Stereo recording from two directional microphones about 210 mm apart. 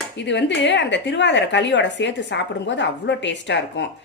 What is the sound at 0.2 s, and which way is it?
Speech, 55° left (ahead or behind).